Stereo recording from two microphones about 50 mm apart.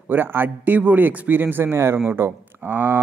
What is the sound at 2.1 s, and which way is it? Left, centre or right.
Speech, right.